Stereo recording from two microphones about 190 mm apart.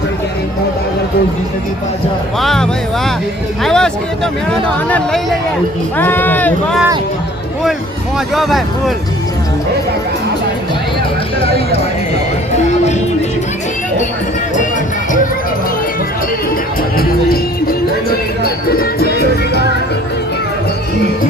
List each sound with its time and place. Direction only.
2.4 s speech: centre (ahead or behind)
3.6 s a sound: 5° left (ahead or behind)
4.5 s speech: 5° left (ahead or behind)
8.4 s speech: centre (ahead or behind)
11.5 s speech: 35° left (ahead or behind)
17.2 s speech: 50° left (ahead or behind)